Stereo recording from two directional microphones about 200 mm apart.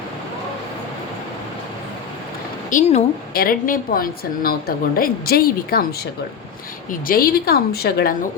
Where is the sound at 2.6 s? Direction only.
40° left (ahead or behind).